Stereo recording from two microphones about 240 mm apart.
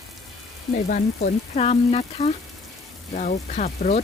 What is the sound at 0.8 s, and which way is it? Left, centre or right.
Speech, left.